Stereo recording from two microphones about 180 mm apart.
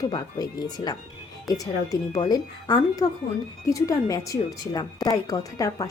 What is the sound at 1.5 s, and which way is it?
Speech, 20° left (ahead or behind).